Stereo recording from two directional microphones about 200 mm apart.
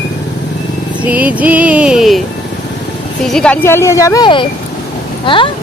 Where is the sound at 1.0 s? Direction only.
5° right (ahead or behind).